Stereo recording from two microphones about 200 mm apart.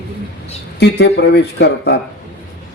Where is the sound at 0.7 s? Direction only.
55° left (ahead or behind).